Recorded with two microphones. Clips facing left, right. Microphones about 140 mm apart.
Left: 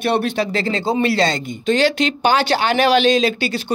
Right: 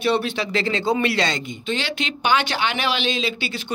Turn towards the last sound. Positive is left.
turn(degrees=40)  # may be behind; listen again after turning